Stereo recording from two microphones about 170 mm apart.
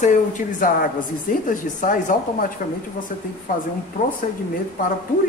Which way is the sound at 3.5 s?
50° left (ahead or behind).